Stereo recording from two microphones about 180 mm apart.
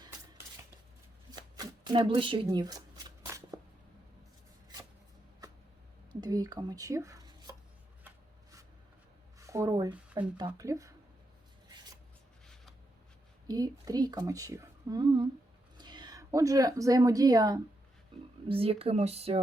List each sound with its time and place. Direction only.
1.3 s speech: 25° right (ahead or behind)
3.2 s shuffling cards: 15° right (ahead or behind)
6.1 s speech: 25° right (ahead or behind)
9.5 s speech: 20° right (ahead or behind)
13.5 s speech: 20° right (ahead or behind)